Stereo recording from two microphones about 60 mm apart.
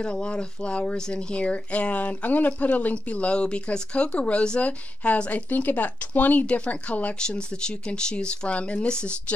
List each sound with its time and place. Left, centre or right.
0.0 s speech: centre